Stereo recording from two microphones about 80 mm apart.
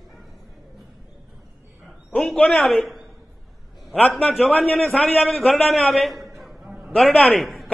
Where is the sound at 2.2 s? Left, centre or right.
Centre.